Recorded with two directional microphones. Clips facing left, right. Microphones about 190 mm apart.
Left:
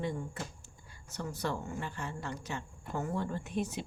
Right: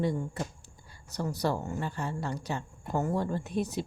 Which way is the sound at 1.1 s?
35° right (ahead or behind).